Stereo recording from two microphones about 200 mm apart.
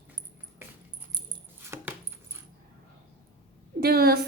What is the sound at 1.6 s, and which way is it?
Dog, 10° right (ahead or behind).